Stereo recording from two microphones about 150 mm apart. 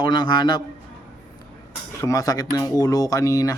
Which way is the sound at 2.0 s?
20° left (ahead or behind).